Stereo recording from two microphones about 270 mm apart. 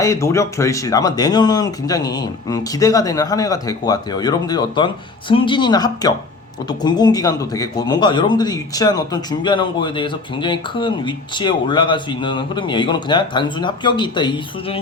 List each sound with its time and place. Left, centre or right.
0.0 s speech: centre